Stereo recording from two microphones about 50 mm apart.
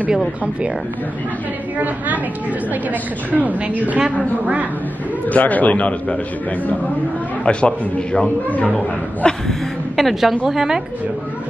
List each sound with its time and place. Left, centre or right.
2.7 s a woman's voice: right
5.3 s a man's voice: left
7.4 s a man's voice: left
9.9 s a woman's voice: centre